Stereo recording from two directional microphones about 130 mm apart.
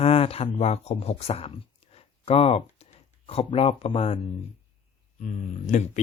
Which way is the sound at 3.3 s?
45° left (ahead or behind).